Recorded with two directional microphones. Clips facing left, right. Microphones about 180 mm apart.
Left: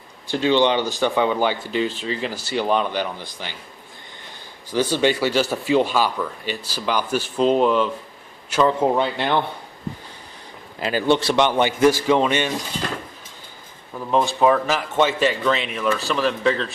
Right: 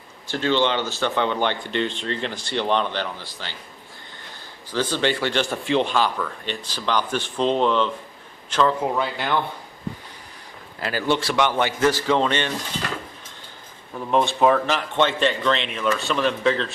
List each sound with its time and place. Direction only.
0.3 s speech: 15° left (ahead or behind)
4.7 s a man's voice: 15° left (ahead or behind)
8.8 s speech: 25° left (ahead or behind)
10.8 s speech: 20° left (ahead or behind)
14.0 s speech: centre (ahead or behind)